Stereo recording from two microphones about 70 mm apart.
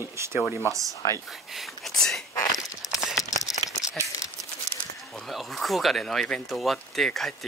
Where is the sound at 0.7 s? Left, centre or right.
Right.